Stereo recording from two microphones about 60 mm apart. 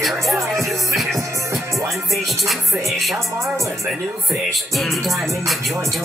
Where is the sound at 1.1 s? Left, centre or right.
Right.